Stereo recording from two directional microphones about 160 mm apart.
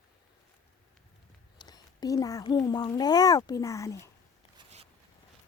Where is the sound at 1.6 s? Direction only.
25° left (ahead or behind).